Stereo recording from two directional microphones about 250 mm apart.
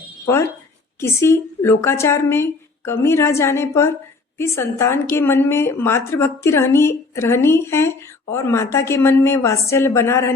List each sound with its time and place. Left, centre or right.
0.9 s a woman's voice: centre